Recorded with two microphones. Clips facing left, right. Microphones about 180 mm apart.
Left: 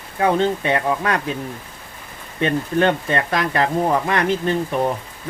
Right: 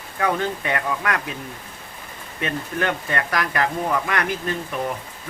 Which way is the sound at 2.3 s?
30° left (ahead or behind).